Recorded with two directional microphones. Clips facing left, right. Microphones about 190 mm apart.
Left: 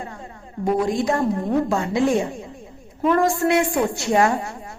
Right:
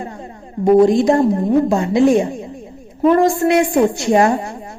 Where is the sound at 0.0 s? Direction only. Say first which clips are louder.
Right 5 dB; 25° right (ahead or behind).